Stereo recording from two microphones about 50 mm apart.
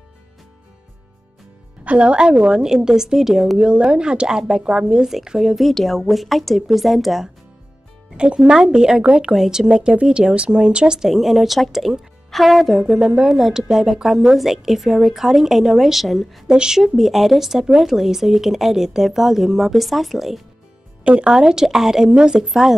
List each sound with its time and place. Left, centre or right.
1.9 s speech: right
3.5 s speech: right
5.6 s a woman's voice: centre
8.2 s speech: right
9.3 s speech: centre
11.0 s a woman's voice: centre
13.0 s a woman's voice: centre
16.4 s speech: centre
16.8 s a woman's voice: centre
21.0 s speech: right
22.5 s speech: centre